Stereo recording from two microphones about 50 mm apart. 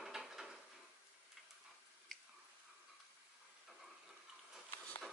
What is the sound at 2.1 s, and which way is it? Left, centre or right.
Chewing, centre.